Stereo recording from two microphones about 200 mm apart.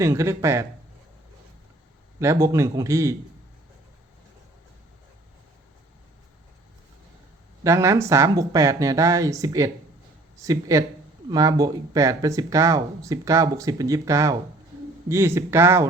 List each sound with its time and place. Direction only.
0.0 s speech: 15° right (ahead or behind)
2.1 s speech: 15° right (ahead or behind)
7.6 s speech: 15° right (ahead or behind)